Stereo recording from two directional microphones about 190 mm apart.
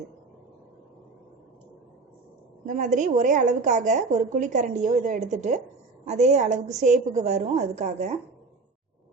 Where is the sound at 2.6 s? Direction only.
40° right (ahead or behind).